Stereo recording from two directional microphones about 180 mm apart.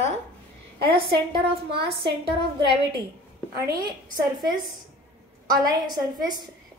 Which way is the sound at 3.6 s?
20° right (ahead or behind).